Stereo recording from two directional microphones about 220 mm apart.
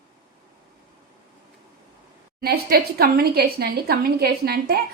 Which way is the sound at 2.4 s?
45° right (ahead or behind).